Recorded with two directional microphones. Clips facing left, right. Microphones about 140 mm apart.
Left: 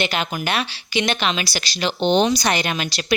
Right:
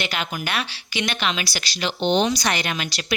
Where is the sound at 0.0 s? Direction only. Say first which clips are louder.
Left 4 dB; 25° left (ahead or behind).